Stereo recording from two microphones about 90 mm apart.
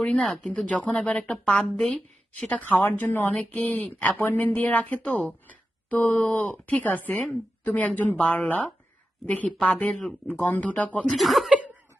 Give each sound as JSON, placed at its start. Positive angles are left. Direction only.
{"t": 0.0, "sound": "speech", "side_deg": 10}
{"t": 9.2, "sound": "speech", "side_deg": 15}
{"t": 11.2, "sound": "speech", "side_deg": 0}
{"t": 11.5, "sound": "cough", "side_deg": -15}